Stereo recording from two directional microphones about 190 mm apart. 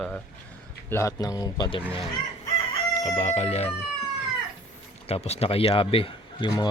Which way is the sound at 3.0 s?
35° left (ahead or behind).